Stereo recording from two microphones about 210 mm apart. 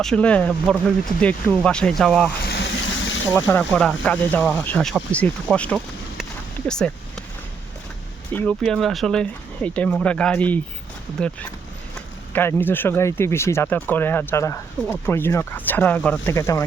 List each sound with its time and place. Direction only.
0.0 s speech: 5° left (ahead or behind)
2.4 s a sound: 50° left (ahead or behind)
3.3 s speech: 10° left (ahead or behind)
6.7 s a sound: 5° left (ahead or behind)
8.3 s speech: 5° left (ahead or behind)
12.3 s speech: 10° left (ahead or behind)